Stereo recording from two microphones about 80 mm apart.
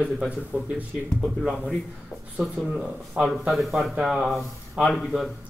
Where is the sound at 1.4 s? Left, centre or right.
Centre.